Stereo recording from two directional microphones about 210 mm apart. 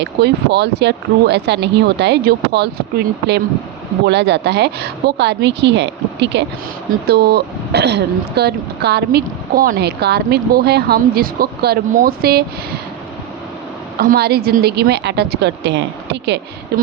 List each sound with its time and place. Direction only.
0.0 s speech: 55° right (ahead or behind)
4.0 s speech: 55° right (ahead or behind)
14.0 s speech: 45° right (ahead or behind)